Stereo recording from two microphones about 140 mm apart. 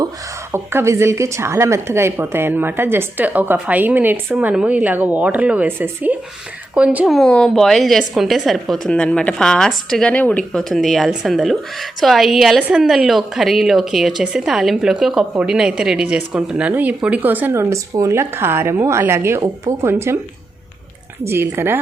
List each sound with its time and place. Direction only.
0.5 s a woman's voice: 20° right (ahead or behind)
21.2 s a woman's voice: 15° right (ahead or behind)